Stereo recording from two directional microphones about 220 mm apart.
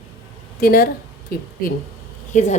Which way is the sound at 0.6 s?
40° left (ahead or behind).